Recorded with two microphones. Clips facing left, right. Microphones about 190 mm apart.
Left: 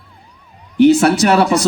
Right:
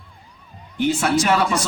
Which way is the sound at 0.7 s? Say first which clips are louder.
Left 9 dB; 70° left (ahead or behind).